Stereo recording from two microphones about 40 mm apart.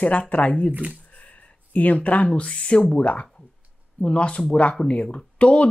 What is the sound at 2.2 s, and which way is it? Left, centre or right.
Speech, left.